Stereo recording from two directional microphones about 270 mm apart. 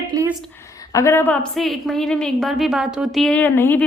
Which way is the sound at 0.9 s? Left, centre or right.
Centre.